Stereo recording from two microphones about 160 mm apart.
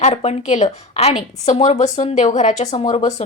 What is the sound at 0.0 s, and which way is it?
Speech, 40° left (ahead or behind).